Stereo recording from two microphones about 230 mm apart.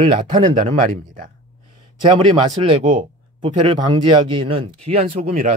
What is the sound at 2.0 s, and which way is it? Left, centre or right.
Speech, right.